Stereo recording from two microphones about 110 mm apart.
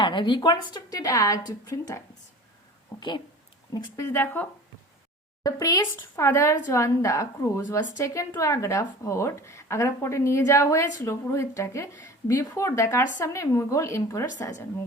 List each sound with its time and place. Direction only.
0.0 s a woman's voice: 45° left (ahead or behind); by 2.0 s 30° left (ahead or behind)
3.9 s a woman's voice: 20° left (ahead or behind)
5.4 s a woman's voice: 35° left (ahead or behind)